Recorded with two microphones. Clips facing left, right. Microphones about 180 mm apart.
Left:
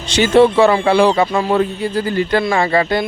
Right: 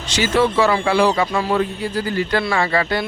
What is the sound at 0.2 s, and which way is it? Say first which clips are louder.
A man's voice: left 6 dB; 25° left (ahead or behind).